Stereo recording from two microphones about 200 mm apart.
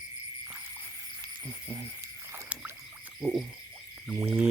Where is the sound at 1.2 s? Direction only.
20° right (ahead or behind).